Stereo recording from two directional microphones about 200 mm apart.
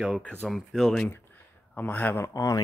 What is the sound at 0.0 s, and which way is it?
Speech, centre (ahead or behind).